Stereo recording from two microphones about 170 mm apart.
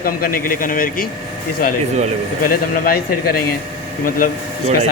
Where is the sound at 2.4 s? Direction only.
60° left (ahead or behind).